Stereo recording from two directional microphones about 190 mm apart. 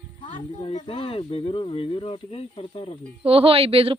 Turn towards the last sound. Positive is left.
turn(degrees=-30)  # may be behind; listen again after turning